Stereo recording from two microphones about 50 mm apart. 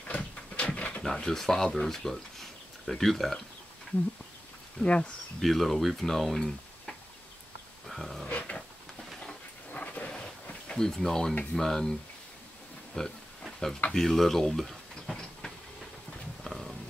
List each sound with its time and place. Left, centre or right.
0.1 s a sound: left
1.0 s speech: centre
4.8 s speech: left
5.4 s speech: centre
7.8 s dog: centre
8.3 s dog: left
9.7 s a sound: left
10.8 s speech: centre
12.9 s a sound: centre
13.9 s tick-tock: centre
16.4 s roaring cats: centre